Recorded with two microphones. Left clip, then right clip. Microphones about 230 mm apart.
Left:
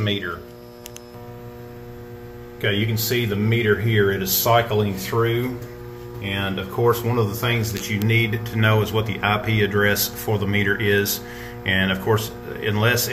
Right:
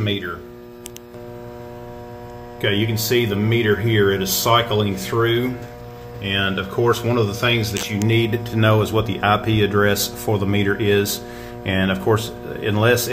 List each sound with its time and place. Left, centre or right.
0.0 s hum: centre
2.6 s speech: centre